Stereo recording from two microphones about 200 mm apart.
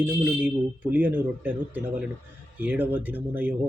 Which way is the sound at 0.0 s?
10° right (ahead or behind).